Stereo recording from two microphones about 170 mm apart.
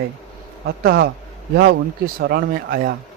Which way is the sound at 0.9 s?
65° right (ahead or behind).